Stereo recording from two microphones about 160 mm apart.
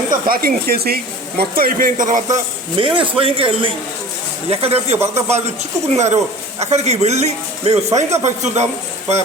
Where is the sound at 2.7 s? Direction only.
30° right (ahead or behind).